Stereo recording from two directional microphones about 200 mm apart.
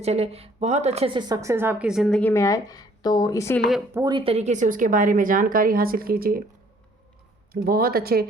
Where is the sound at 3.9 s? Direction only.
20° right (ahead or behind); by 6.4 s 45° right (ahead or behind).